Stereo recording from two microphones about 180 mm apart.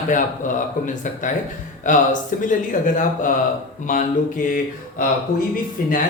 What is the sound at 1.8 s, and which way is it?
Speech, 45° left (ahead or behind).